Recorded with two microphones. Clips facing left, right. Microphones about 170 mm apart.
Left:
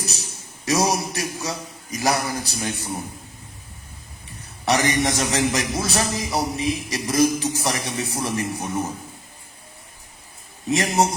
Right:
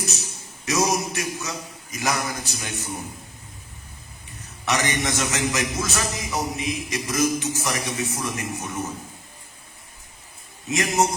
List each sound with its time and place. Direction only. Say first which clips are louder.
0.0 s a man's voice: right 1 dB; 35° left (ahead or behind)
4.3 s a man's voice: left 4 dB; 35° left (ahead or behind)
10.7 s a man's voice: left 2 dB; 35° left (ahead or behind)